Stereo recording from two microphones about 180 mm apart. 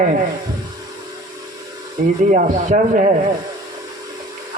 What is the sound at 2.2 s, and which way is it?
Speech, 45° right (ahead or behind).